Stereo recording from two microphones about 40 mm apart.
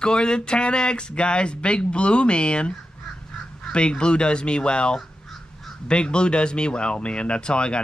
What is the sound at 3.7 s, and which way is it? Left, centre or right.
Speech, left.